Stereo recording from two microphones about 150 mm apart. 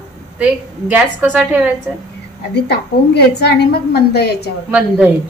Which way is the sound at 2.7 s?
90° left.